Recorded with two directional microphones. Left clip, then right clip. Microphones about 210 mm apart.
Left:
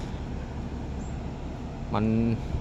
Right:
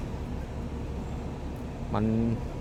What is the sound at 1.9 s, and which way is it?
Speech, 5° left (ahead or behind).